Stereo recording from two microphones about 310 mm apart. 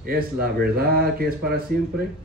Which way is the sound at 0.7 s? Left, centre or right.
Right.